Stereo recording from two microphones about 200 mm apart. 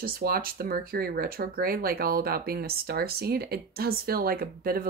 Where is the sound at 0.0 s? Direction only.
50° right (ahead or behind).